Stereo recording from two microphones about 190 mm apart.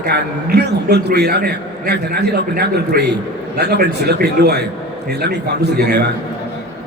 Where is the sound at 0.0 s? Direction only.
60° right (ahead or behind).